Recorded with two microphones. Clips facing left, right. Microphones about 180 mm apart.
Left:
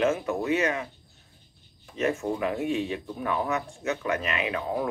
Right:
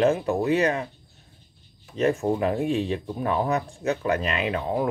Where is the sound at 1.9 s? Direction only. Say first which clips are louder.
Right 4 dB; 35° right (ahead or behind).